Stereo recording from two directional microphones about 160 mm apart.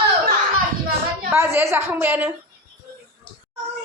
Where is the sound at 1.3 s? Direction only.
15° right (ahead or behind).